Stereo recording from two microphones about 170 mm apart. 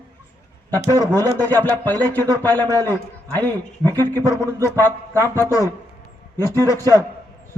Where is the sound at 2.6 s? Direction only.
20° right (ahead or behind).